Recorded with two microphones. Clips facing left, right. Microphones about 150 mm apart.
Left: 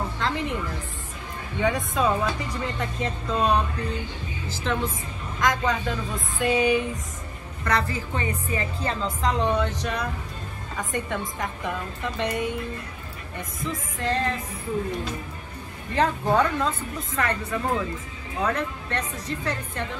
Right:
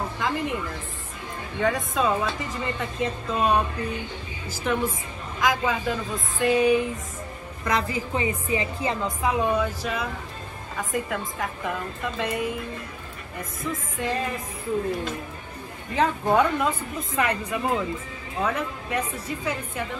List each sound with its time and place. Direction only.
1.6 s a woman's voice: centre (ahead or behind)
7.6 s a woman's voice: 15° right (ahead or behind)
15.9 s a woman's voice: 5° right (ahead or behind)